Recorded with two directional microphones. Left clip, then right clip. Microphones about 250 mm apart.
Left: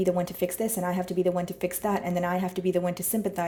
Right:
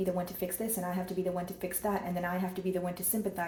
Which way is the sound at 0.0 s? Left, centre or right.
Left.